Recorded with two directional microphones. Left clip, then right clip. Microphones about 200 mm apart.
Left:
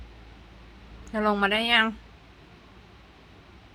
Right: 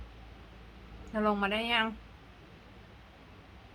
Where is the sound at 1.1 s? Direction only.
15° left (ahead or behind).